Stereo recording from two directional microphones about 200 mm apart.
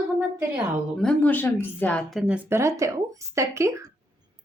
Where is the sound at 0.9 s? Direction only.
5° left (ahead or behind).